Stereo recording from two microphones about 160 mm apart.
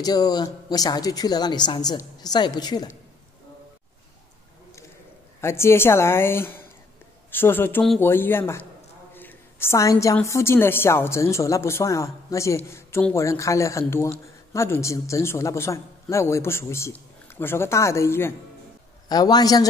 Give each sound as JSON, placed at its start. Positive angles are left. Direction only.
{"t": 0.0, "sound": "a woman's voice", "side_deg": 25}
{"t": 5.4, "sound": "a man's voice", "side_deg": 15}
{"t": 9.1, "sound": "a sound", "side_deg": 10}
{"t": 10.1, "sound": "a man's voice", "side_deg": 15}